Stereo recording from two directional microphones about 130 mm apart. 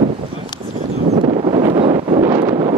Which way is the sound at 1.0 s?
60° right (ahead or behind).